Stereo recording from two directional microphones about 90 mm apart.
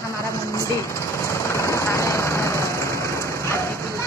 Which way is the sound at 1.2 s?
30° left (ahead or behind).